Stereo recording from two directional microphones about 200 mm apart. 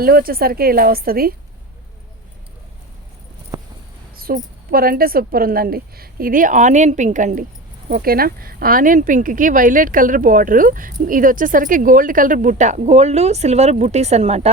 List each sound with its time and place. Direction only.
0.0 s a woman's voice: 45° right (ahead or behind)
4.2 s a woman's voice: 45° right (ahead or behind); by 14.5 s 30° right (ahead or behind)